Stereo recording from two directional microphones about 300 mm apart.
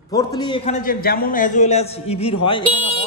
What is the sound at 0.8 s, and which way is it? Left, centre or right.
A man's voice, left.